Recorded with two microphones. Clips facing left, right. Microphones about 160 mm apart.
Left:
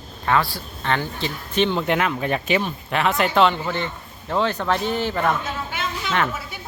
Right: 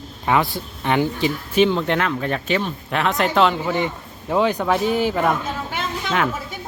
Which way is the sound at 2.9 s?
Centre (ahead or behind).